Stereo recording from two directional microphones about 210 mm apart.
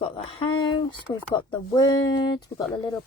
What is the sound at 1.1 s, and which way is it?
Speech, 20° left (ahead or behind).